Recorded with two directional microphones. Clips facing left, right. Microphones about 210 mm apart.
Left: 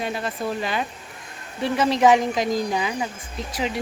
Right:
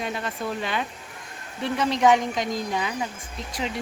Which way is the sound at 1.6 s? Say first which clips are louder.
Left 3 dB; 5° left (ahead or behind).